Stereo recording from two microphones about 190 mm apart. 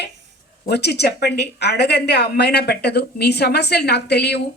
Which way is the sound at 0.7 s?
60° left (ahead or behind).